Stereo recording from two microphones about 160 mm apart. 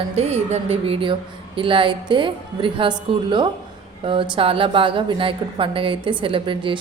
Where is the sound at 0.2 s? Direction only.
40° right (ahead or behind).